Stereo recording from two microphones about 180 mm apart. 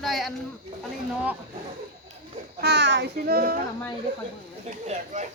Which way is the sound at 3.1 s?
55° right (ahead or behind).